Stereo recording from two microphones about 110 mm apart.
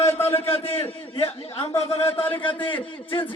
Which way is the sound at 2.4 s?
50° left (ahead or behind).